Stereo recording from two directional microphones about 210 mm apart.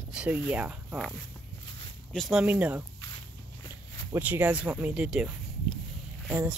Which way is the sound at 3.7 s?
10° right (ahead or behind).